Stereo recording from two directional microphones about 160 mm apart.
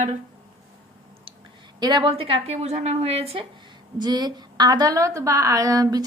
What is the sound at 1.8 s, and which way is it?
A woman's voice, 25° right (ahead or behind).